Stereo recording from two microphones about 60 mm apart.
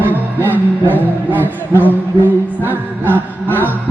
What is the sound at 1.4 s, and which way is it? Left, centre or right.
Music, left.